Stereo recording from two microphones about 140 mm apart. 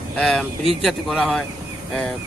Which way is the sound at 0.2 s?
5° left (ahead or behind).